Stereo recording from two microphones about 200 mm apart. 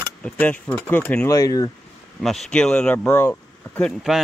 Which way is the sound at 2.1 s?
Centre (ahead or behind).